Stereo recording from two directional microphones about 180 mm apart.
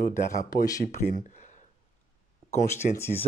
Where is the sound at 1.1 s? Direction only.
45° left (ahead or behind).